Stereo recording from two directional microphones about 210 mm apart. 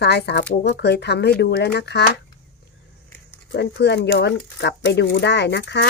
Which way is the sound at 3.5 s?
55° left (ahead or behind).